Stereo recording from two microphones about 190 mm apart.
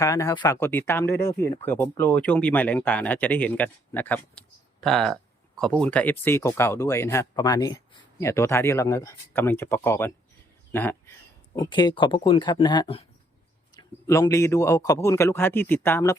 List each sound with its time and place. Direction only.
0.0 s speech: 15° left (ahead or behind)
11.5 s speech: 25° left (ahead or behind)
13.7 s speech: 15° left (ahead or behind)